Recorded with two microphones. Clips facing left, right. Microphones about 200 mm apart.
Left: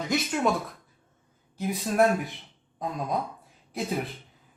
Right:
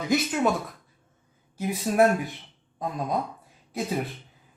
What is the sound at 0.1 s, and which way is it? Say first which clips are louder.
Speech: right 2 dB; centre (ahead or behind).